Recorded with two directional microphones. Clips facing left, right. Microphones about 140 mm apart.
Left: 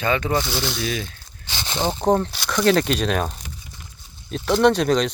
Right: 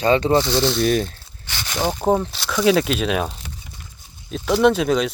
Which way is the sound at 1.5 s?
20° left (ahead or behind).